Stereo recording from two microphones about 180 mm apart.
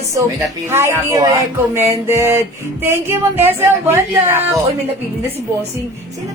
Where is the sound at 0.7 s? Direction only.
15° right (ahead or behind).